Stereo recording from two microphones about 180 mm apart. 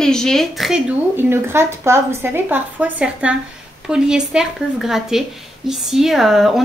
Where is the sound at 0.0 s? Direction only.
5° left (ahead or behind).